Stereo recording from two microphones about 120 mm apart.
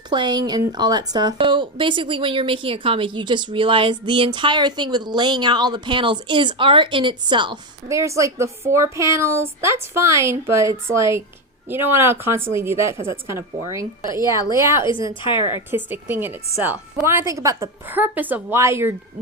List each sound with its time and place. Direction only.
0.1 s a woman's voice: 40° right (ahead or behind)
7.9 s a woman's voice: 25° right (ahead or behind)
14.8 s speech: 45° left (ahead or behind)
15.7 s a woman's voice: 15° right (ahead or behind)
17.8 s a woman's voice: 15° right (ahead or behind)